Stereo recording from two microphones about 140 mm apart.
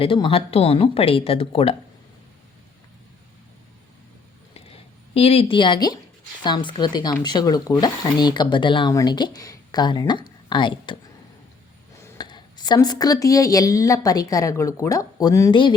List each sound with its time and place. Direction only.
0.0 s speech: 40° left (ahead or behind)
4.5 s a sound: 45° left (ahead or behind)
6.4 s speech: 35° left (ahead or behind)
11.9 s a woman's voice: 25° left (ahead or behind)